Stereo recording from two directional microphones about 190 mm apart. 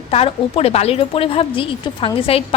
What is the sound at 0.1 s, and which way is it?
A woman's voice, 30° left (ahead or behind).